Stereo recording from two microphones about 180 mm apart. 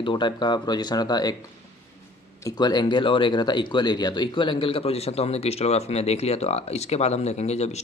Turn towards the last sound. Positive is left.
turn(degrees=35)  # may be behind; listen again after turning